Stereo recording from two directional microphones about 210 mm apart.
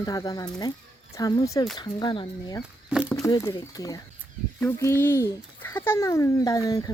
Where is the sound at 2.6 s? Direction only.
5° right (ahead or behind).